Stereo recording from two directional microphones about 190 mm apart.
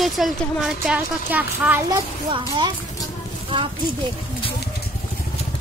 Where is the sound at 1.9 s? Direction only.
25° right (ahead or behind).